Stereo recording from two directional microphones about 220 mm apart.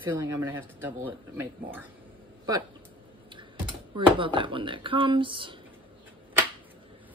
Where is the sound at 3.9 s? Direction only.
20° right (ahead or behind).